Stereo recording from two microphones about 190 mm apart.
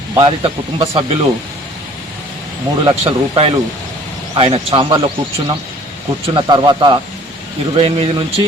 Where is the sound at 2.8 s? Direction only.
25° right (ahead or behind).